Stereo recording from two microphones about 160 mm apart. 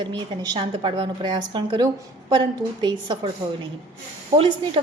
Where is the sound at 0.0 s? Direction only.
25° right (ahead or behind).